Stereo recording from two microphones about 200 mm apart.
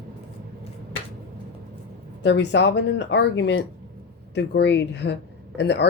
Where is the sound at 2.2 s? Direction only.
60° left (ahead or behind).